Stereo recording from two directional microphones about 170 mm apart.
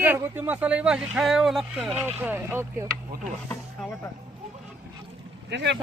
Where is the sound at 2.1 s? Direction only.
10° right (ahead or behind).